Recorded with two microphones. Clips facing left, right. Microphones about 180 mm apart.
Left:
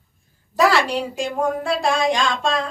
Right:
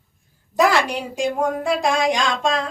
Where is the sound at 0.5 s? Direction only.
15° right (ahead or behind).